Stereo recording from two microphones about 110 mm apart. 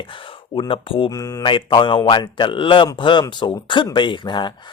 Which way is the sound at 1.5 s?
50° left (ahead or behind).